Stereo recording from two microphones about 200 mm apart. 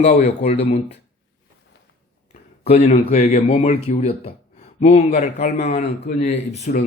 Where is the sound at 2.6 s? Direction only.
30° left (ahead or behind).